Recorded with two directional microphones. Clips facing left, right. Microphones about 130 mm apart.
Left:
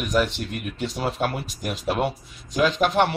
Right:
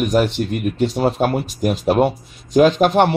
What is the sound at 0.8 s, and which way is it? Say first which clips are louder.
Speech: right 7 dB; 30° right (ahead or behind).